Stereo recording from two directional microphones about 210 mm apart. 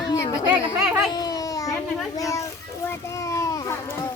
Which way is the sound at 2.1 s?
15° left (ahead or behind).